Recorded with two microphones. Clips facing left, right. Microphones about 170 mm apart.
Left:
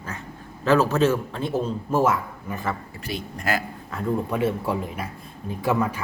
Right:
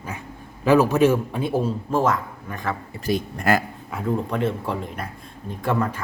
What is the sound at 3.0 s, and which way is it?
Speech, 50° right (ahead or behind).